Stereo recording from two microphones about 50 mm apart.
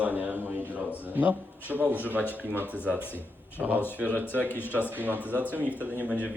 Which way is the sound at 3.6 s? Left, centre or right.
Centre.